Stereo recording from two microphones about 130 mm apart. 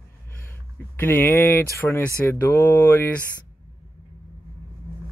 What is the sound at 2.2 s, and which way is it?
Mantra, 20° left (ahead or behind).